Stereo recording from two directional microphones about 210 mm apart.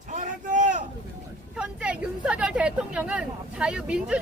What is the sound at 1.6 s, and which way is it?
Speech, 5° right (ahead or behind).